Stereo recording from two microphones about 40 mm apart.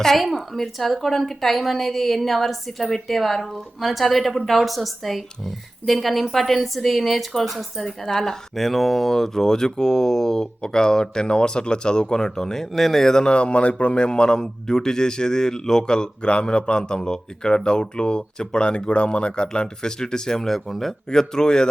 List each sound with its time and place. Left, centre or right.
0.0 s speech: centre
8.1 s a man's voice: centre
21.1 s speech: centre